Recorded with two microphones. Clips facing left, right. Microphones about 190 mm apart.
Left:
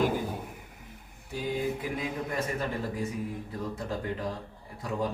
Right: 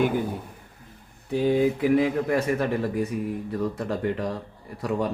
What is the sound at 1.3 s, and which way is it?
Speech, 60° right (ahead or behind).